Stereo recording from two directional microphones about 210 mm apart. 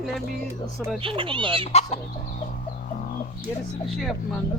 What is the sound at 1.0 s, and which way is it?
Speech, 25° right (ahead or behind).